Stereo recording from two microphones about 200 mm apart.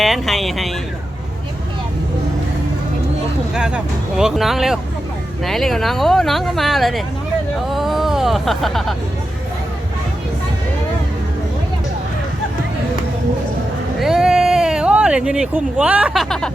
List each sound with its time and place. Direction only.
0.0 s speech: centre (ahead or behind)
3.5 s speech: 5° right (ahead or behind)
14.0 s a sound: centre (ahead or behind)